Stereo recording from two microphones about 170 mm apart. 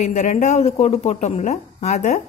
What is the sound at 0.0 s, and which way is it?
Speech, 45° left (ahead or behind).